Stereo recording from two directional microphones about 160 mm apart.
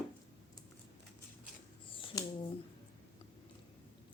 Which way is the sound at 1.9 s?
30° left (ahead or behind).